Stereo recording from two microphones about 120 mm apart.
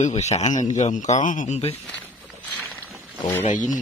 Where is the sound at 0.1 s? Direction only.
65° left (ahead or behind).